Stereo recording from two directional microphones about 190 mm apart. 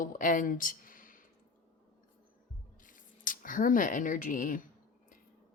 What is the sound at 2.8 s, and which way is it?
Speech, 45° left (ahead or behind).